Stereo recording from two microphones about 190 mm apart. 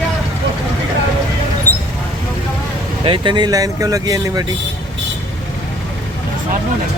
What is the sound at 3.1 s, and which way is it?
Speech, 25° right (ahead or behind).